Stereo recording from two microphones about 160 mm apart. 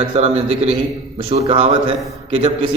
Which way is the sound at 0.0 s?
35° right (ahead or behind).